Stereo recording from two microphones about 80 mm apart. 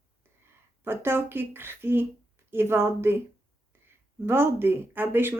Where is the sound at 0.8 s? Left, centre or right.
Right.